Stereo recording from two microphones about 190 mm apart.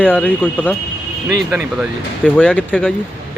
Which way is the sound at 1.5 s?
5° right (ahead or behind).